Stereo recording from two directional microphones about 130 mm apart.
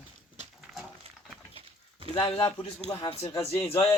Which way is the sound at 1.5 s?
45° right (ahead or behind).